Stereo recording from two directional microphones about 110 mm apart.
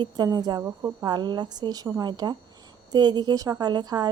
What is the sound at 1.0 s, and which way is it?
A woman's voice, 40° right (ahead or behind).